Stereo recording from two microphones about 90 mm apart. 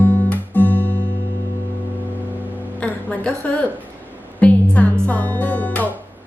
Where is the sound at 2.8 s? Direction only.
15° left (ahead or behind).